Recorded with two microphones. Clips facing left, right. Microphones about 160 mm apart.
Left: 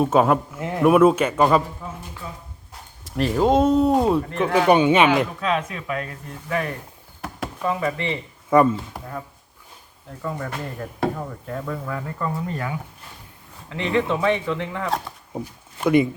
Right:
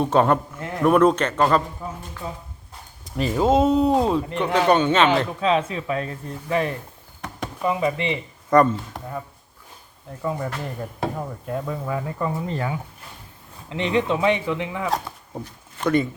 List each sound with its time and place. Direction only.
0.0 s speech: 5° left (ahead or behind)
3.0 s speech: centre (ahead or behind)
5.4 s speech: 30° right (ahead or behind)
7.2 s chop: 5° left (ahead or behind)
7.6 s speech: 15° right (ahead or behind)
8.4 s speech: 5° left (ahead or behind)
10.2 s speech: 10° right (ahead or behind)
12.5 s speech: 25° right (ahead or behind)
15.4 s speech: 10° left (ahead or behind)